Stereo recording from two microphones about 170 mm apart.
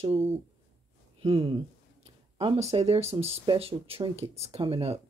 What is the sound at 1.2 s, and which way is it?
Speech, 30° right (ahead or behind).